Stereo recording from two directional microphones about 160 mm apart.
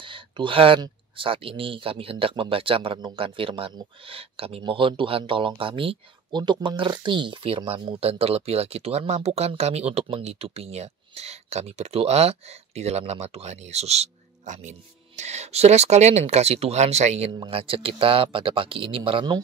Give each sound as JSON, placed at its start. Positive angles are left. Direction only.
{"t": 0.0, "sound": "speech", "side_deg": -30}